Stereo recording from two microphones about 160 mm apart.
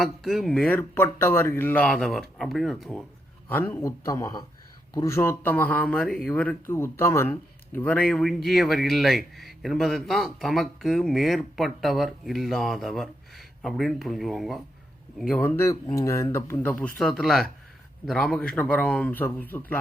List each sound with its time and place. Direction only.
0.0 s speech: centre (ahead or behind)
3.5 s speech: 15° left (ahead or behind)